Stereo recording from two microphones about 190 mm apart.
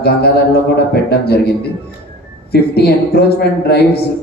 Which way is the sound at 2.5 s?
55° left (ahead or behind).